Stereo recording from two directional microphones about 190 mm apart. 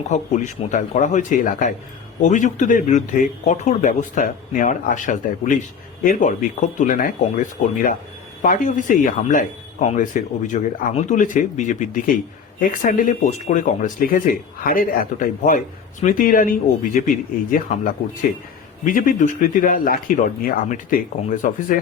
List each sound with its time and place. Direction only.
0.1 s speech: 40° left (ahead or behind)